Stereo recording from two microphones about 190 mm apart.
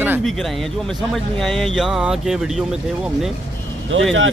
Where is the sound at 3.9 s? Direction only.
90° right.